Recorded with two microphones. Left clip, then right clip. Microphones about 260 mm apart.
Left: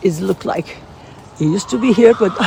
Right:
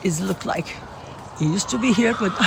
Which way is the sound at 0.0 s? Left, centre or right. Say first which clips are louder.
Left 8 dB; centre.